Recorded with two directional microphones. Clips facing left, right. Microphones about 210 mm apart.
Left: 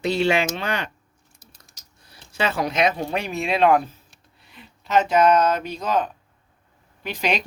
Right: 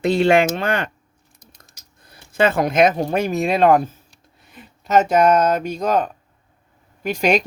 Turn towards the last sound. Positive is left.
turn(degrees=-45)  # may be behind; listen again after turning